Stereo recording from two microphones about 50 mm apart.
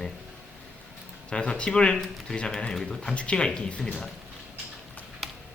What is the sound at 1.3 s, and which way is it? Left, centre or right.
Speech, centre.